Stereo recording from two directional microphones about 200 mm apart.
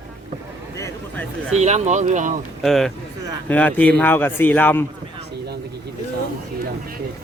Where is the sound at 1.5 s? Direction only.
35° right (ahead or behind).